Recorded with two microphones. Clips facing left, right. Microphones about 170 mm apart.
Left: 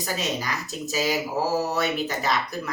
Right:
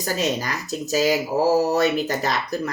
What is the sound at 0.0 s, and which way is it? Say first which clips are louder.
Speech: right 5 dB; 45° right (ahead or behind).